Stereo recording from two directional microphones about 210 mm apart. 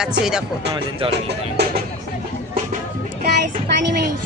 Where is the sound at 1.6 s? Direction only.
55° right (ahead or behind).